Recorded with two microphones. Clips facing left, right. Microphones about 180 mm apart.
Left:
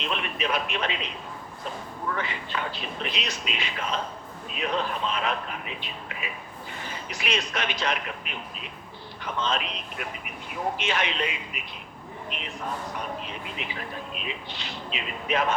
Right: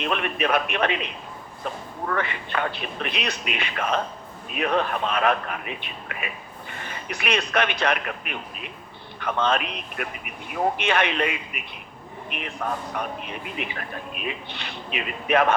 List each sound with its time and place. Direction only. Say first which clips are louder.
0.0 s a man's voice: right 5 dB; 55° right (ahead or behind)